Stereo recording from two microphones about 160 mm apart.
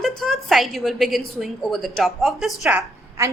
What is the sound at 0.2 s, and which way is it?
A woman's voice, centre (ahead or behind).